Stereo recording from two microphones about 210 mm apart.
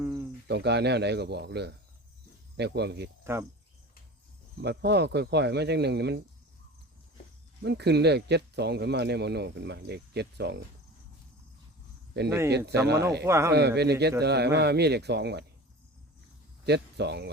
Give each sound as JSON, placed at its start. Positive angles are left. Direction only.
{"t": 0.0, "sound": "cricket", "side_deg": -10}
{"t": 0.4, "sound": "speech", "side_deg": -55}
{"t": 4.6, "sound": "speech", "side_deg": -50}
{"t": 7.6, "sound": "speech", "side_deg": -55}
{"t": 12.5, "sound": "speech", "side_deg": -50}
{"t": 13.2, "sound": "speech", "side_deg": -15}
{"t": 13.5, "sound": "speech", "side_deg": -50}
{"t": 16.6, "sound": "speech", "side_deg": -50}